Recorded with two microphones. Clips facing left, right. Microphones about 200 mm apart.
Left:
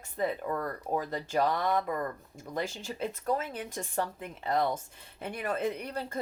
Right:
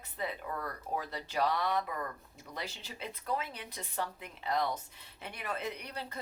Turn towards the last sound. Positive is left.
turn(degrees=45)  # may be behind; listen again after turning